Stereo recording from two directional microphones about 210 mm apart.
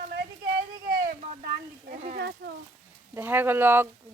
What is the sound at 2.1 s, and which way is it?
Speech, 50° right (ahead or behind).